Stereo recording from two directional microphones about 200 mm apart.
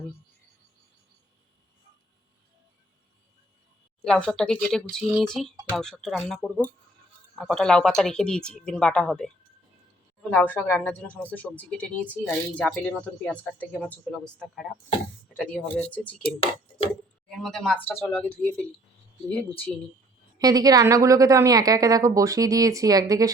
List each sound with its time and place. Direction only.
4.0 s speech: 5° left (ahead or behind)
17.2 s speech: centre (ahead or behind)
20.4 s a woman's voice: 20° right (ahead or behind)